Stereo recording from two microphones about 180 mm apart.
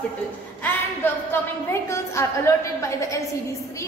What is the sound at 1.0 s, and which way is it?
A woman's voice, 10° left (ahead or behind).